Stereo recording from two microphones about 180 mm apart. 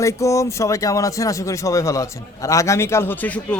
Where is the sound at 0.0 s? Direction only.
15° left (ahead or behind).